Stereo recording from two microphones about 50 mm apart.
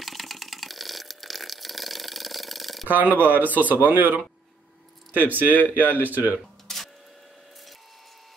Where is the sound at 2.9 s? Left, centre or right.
Right.